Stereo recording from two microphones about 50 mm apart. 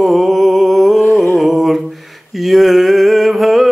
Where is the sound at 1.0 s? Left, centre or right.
Left.